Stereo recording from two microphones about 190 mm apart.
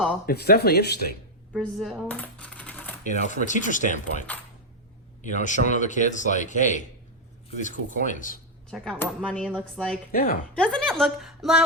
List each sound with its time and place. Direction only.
0.3 s speech: 55° left (ahead or behind)
1.5 s coin: centre (ahead or behind)
3.1 s a man's voice: 40° left (ahead or behind)
8.7 s a woman's voice: 5° left (ahead or behind)